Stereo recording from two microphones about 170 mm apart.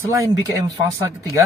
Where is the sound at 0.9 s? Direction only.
20° right (ahead or behind).